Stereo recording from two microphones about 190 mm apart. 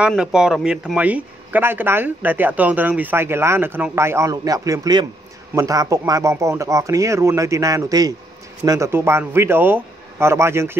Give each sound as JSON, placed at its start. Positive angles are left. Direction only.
{"t": 0.0, "sound": "speech", "side_deg": -5}